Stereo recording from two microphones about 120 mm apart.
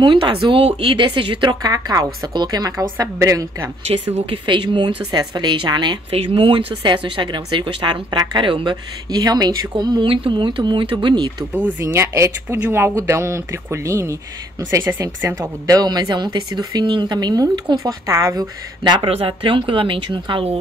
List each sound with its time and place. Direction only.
0.0 s speech: 45° right (ahead or behind)
4.5 s speech: 40° right (ahead or behind)
11.8 s speech: 20° right (ahead or behind)
18.9 s speech: 50° right (ahead or behind)